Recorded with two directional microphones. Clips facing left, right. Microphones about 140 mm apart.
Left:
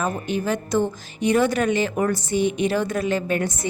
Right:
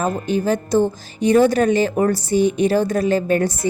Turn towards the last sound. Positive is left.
turn(degrees=-35)  # may be behind; listen again after turning